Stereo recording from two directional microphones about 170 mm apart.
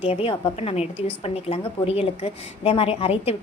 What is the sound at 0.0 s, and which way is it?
A woman's voice, 35° left (ahead or behind).